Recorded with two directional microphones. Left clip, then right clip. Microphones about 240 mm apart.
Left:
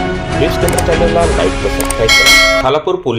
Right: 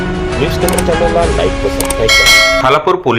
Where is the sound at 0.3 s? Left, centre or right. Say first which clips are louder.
Left 1 dB; centre.